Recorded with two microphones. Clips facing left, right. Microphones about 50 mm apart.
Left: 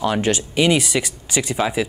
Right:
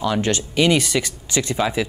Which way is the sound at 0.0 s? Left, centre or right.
Left.